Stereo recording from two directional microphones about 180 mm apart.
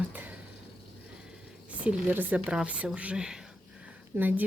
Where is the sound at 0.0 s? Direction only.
10° right (ahead or behind).